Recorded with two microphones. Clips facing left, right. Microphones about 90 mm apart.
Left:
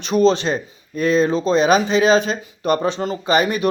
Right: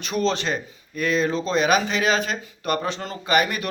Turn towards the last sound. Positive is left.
turn(degrees=25)  # may be behind; listen again after turning